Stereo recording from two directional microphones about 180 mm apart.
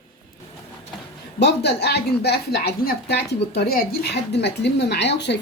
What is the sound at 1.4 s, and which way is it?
A woman's voice, 70° left (ahead or behind).